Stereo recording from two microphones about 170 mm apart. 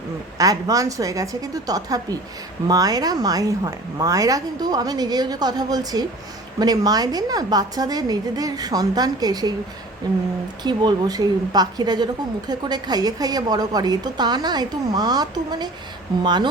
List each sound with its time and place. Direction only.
0.3 s a woman's voice: 20° right (ahead or behind)
10.6 s a woman's voice: 25° right (ahead or behind)